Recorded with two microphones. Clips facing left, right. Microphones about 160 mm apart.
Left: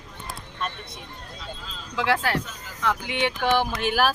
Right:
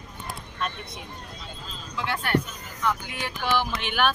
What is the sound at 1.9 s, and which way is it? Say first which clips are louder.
Speech: left 2 dB; 90° left.